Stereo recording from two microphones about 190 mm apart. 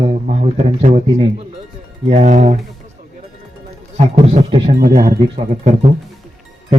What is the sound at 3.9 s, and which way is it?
Speech, 35° right (ahead or behind).